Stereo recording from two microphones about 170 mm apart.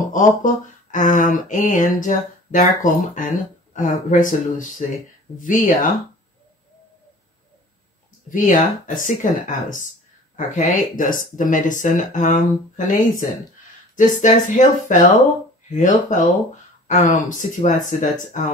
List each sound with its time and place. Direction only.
0.1 s speech: 50° left (ahead or behind)
8.3 s speech: 50° left (ahead or behind)